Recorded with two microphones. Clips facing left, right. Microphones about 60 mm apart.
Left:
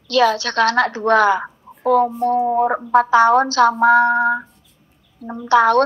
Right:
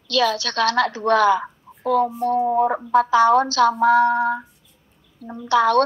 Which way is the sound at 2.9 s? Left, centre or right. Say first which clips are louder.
Left 3 dB; left.